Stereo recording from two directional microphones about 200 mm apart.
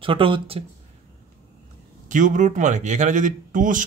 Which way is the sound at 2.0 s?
40° right (ahead or behind).